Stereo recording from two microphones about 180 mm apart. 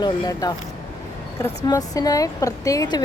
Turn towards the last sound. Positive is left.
turn(degrees=20)  # may be behind; listen again after turning